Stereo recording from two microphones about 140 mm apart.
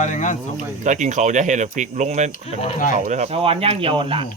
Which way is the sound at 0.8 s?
60° right (ahead or behind).